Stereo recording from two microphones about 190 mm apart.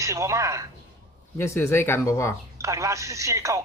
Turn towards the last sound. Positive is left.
turn(degrees=-15)  # may be behind; listen again after turning